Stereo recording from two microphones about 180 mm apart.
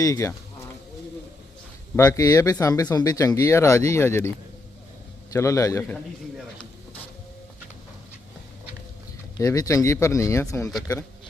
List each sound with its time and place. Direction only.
0.0 s speech: 15° left (ahead or behind)
2.0 s speech: 20° left (ahead or behind)
5.3 s speech: 15° left (ahead or behind)
9.4 s speech: 20° left (ahead or behind)